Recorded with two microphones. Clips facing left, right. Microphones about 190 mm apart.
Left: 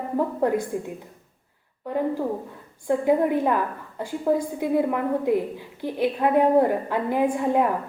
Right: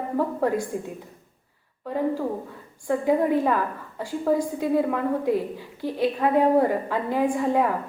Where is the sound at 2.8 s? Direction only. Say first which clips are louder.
Left 1 dB; 15° left (ahead or behind).